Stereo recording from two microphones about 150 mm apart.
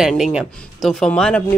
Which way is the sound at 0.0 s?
5° right (ahead or behind).